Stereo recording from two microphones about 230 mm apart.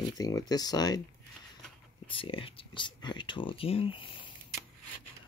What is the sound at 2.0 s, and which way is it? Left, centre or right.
Speech, left.